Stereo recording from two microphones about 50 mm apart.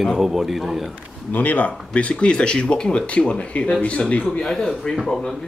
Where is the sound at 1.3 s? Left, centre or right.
Left.